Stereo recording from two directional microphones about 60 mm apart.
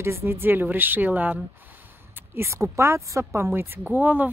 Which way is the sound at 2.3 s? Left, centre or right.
Right.